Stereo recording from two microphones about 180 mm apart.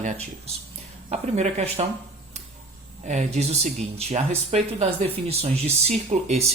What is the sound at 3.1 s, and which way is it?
Speech, 40° right (ahead or behind).